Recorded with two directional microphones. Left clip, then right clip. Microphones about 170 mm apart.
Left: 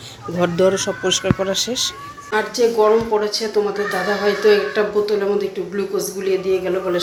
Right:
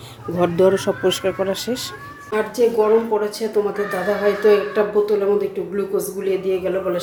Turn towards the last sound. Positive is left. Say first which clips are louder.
# left 1 dB
turn(degrees=-5)  # may be behind; listen again after turning